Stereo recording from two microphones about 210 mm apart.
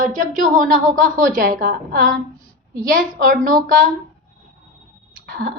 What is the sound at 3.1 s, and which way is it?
Speech, 40° right (ahead or behind).